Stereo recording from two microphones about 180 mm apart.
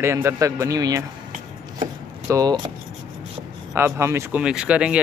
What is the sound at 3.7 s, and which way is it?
Speech, 15° right (ahead or behind).